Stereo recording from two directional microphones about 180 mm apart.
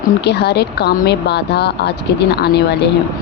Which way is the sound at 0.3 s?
65° left (ahead or behind).